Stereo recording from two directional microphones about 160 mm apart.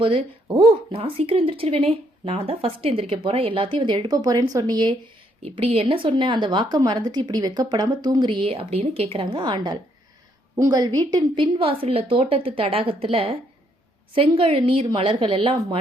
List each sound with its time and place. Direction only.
0.0 s a woman's voice: 30° right (ahead or behind)